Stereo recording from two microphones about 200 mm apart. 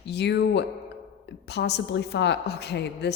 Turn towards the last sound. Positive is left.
turn(degrees=55)  # may be behind; listen again after turning